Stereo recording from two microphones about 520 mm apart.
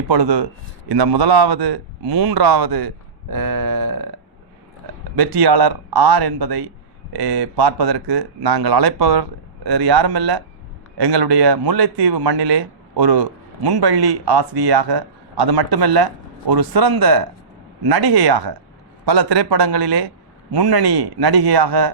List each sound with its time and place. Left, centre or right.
0.1 s a man's voice: right
5.1 s a man's voice: right